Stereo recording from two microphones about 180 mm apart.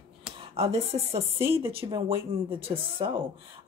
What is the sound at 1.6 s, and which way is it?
Speech, 30° right (ahead or behind).